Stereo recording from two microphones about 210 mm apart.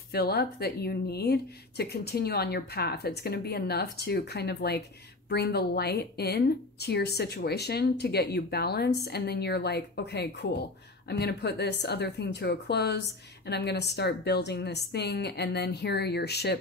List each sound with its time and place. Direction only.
0.1 s a woman's voice: 50° left (ahead or behind)